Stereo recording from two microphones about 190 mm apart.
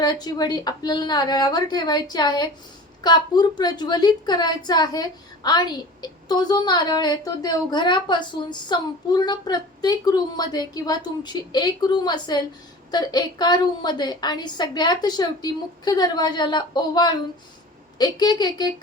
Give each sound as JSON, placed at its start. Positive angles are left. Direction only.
{"t": 0.0, "sound": "a woman's voice", "side_deg": 20}